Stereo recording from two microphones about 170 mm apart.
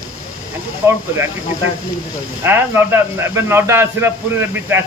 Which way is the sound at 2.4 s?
10° right (ahead or behind).